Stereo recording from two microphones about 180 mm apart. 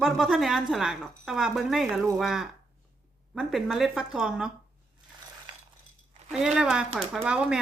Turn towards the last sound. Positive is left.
turn(degrees=-5)  # may be behind; listen again after turning